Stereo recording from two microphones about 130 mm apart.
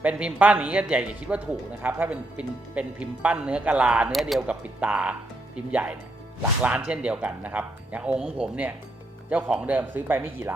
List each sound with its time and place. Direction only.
0.0 s speech: 10° right (ahead or behind)